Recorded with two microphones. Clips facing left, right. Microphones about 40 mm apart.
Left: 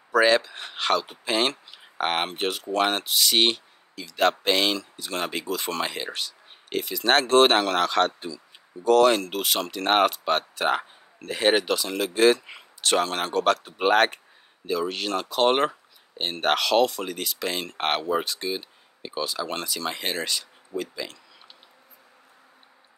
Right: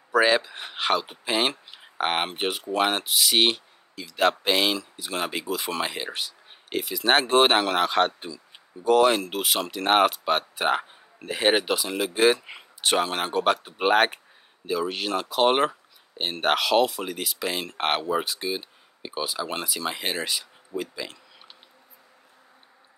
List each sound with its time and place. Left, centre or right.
0.1 s speech: centre